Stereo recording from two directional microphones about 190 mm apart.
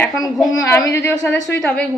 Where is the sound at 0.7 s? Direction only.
15° left (ahead or behind).